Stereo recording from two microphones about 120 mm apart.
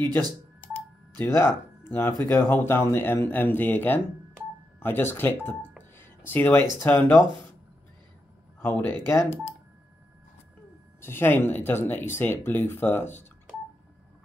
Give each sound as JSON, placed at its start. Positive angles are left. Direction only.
{"t": 1.1, "sound": "speech", "side_deg": 20}
{"t": 8.5, "sound": "speech", "side_deg": 15}
{"t": 11.0, "sound": "speech", "side_deg": 20}